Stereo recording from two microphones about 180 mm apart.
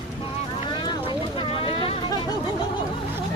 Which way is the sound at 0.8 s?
25° left (ahead or behind).